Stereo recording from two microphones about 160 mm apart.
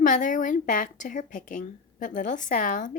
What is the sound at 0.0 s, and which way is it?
A child's voice, 55° left (ahead or behind).